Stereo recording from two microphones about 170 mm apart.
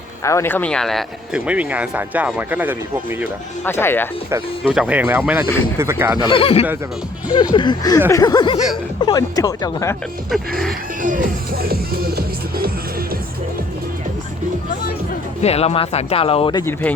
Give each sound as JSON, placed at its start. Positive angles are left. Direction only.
{"t": 0.3, "sound": "speech", "side_deg": 15}
{"t": 3.6, "sound": "speech", "side_deg": 15}
{"t": 4.7, "sound": "speech", "side_deg": -5}
{"t": 6.2, "sound": "speech", "side_deg": 30}
{"t": 10.3, "sound": "speech", "side_deg": 0}
{"t": 11.0, "sound": "music", "side_deg": -50}
{"t": 15.4, "sound": "speech", "side_deg": 40}